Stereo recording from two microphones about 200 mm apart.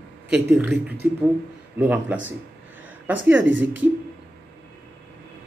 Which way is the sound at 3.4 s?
70° right (ahead or behind).